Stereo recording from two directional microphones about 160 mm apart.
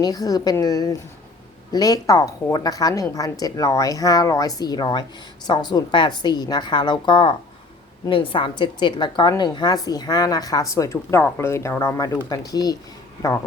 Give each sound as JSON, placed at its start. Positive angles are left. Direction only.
{"t": 0.0, "sound": "a woman's voice", "side_deg": 25}